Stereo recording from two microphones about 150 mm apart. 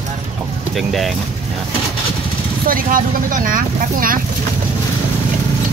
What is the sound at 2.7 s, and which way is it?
Speech, 70° right (ahead or behind).